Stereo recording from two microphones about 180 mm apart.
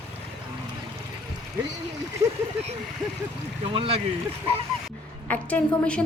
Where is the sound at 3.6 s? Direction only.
30° right (ahead or behind).